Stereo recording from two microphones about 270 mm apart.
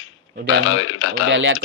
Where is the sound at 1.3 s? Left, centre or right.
Right.